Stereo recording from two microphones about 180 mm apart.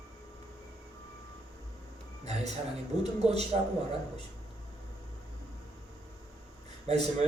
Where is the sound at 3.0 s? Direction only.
35° right (ahead or behind).